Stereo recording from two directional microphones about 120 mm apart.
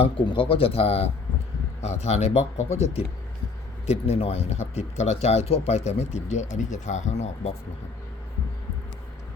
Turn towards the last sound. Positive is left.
turn(degrees=70)  # may be behind; listen again after turning